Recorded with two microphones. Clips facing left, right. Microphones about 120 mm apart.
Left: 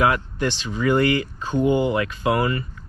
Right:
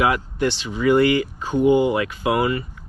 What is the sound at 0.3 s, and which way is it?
Speech, 15° right (ahead or behind).